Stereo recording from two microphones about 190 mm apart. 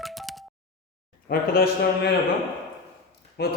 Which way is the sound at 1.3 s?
50° left (ahead or behind).